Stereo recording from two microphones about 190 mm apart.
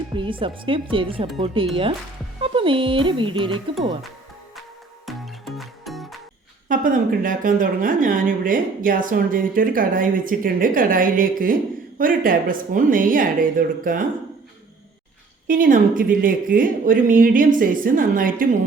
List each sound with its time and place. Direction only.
0.2 s speech: 25° right (ahead or behind)
5.0 s music: centre (ahead or behind)
6.7 s speech: 45° right (ahead or behind)
15.4 s speech: 45° right (ahead or behind)